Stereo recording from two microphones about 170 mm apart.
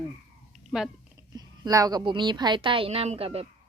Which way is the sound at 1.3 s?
20° right (ahead or behind).